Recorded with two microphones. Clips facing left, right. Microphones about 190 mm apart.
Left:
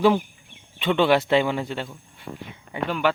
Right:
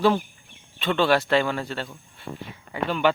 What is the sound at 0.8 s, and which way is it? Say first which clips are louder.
Speech: left 2 dB; 15° left (ahead or behind).